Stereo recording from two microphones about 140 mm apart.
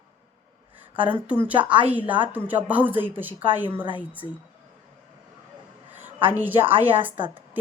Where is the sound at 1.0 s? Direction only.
10° right (ahead or behind).